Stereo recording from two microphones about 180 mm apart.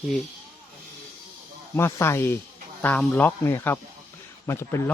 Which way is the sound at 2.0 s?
15° left (ahead or behind).